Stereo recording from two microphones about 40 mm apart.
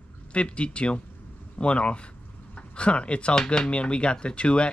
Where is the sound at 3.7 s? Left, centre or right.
Left.